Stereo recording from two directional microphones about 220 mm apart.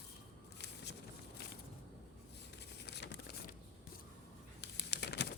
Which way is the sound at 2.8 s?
50° left (ahead or behind).